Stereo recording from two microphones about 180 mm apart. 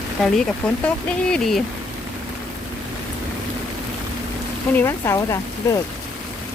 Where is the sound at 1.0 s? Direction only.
5° left (ahead or behind).